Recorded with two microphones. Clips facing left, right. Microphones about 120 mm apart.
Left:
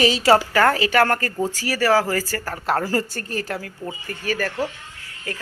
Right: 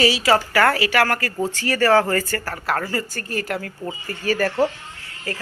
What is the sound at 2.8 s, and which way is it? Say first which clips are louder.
Speech: left 3 dB; 40° left (ahead or behind).